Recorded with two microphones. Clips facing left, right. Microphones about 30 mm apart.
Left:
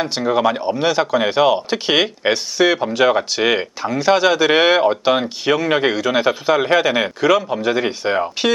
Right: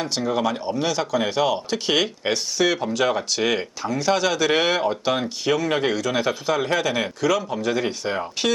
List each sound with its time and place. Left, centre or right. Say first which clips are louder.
0.0 s speech: left 6 dB; left